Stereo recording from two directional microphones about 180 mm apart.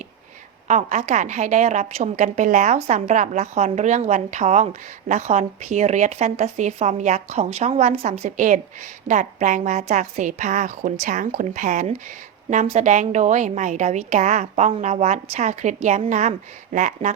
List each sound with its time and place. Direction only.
0.7 s a woman's voice: 40° right (ahead or behind)